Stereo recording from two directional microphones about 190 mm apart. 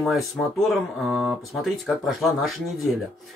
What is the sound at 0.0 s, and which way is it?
Speech, centre (ahead or behind).